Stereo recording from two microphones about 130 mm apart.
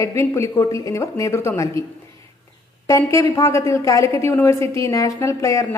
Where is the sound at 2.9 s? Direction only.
20° left (ahead or behind).